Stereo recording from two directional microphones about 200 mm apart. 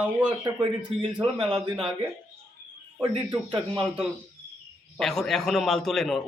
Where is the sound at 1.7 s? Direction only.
5° right (ahead or behind).